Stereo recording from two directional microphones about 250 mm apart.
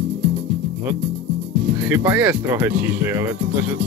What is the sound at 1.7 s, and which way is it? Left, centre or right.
Speech, centre.